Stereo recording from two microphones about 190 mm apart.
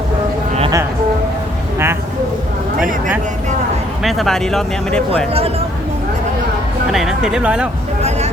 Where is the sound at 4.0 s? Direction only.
Centre (ahead or behind).